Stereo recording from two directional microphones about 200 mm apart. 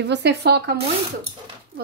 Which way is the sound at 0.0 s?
60° right (ahead or behind).